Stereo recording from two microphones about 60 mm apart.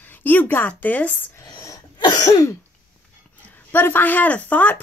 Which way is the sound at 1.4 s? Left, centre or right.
Left.